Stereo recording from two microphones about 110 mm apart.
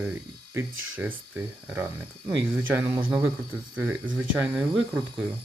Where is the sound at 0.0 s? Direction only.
20° right (ahead or behind).